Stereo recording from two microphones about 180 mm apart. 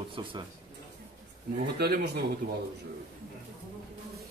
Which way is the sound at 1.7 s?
65° right (ahead or behind).